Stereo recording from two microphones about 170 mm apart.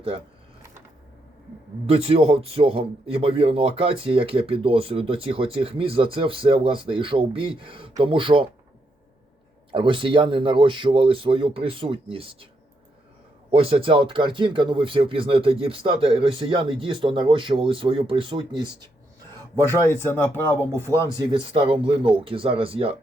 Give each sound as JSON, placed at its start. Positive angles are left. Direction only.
{"t": 1.9, "sound": "speech", "side_deg": -35}
{"t": 9.7, "sound": "speech", "side_deg": -30}
{"t": 13.5, "sound": "speech", "side_deg": -35}
{"t": 19.9, "sound": "speech", "side_deg": 15}
{"t": 21.2, "sound": "speech", "side_deg": -30}